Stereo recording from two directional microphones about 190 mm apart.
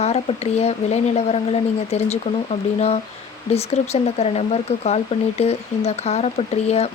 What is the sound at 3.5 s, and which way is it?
Speech, 35° left (ahead or behind).